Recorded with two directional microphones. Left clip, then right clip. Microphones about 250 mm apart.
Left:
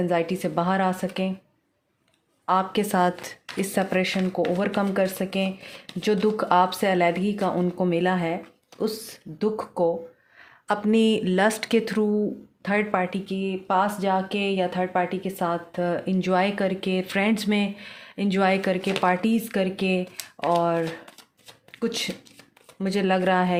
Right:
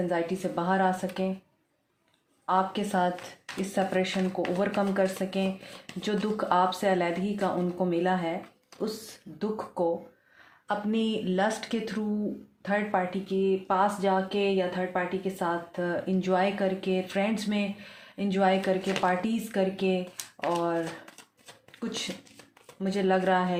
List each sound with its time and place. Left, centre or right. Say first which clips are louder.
0.1 s speech: left 5 dB; left
2.5 s speech: left 4 dB; left
9.4 s speech: left 6 dB; left